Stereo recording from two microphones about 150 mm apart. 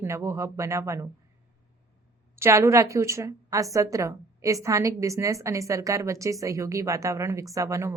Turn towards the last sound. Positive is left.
turn(degrees=-20)  # may be behind; listen again after turning